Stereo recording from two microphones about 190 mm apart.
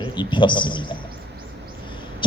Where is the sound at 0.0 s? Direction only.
25° left (ahead or behind).